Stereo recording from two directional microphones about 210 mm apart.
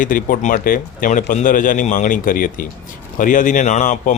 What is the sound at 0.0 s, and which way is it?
Speech, 40° left (ahead or behind).